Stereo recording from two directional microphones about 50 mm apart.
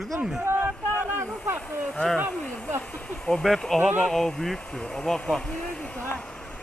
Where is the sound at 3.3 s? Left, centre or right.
Centre.